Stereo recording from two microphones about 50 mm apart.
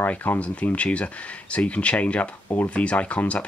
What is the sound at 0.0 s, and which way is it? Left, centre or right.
Speech, left.